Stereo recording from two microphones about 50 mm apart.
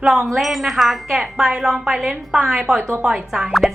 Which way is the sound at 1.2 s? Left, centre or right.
Centre.